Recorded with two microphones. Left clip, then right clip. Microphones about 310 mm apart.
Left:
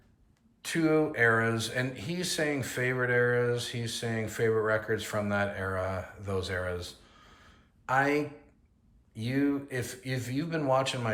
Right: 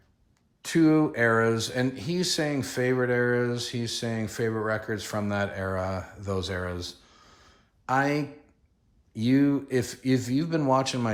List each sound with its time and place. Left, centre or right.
0.6 s speech: centre